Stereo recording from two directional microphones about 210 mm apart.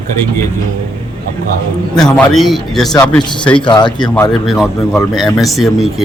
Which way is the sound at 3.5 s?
25° left (ahead or behind).